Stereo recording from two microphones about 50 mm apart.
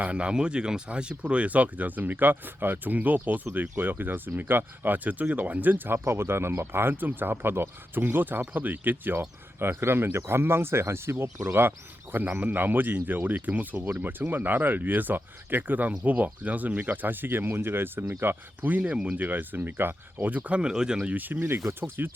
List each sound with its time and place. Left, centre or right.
0.0 s speech: right
6.1 s speech: right
9.6 s speech: right
12.1 s speech: right
19.1 s speech: right
20.6 s speech: centre
21.1 s speech: right